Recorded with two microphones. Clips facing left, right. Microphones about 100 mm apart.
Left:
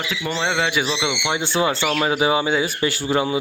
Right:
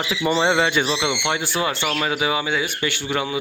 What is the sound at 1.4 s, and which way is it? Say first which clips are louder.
Speech: left 3 dB; 30° left (ahead or behind).